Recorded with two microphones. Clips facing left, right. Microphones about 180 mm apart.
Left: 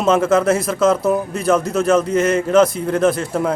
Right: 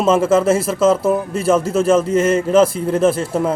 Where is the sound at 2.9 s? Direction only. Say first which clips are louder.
Right 1 dB; 30° right (ahead or behind).